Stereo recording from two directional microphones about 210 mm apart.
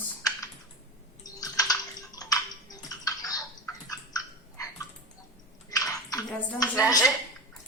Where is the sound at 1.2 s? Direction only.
15° left (ahead or behind).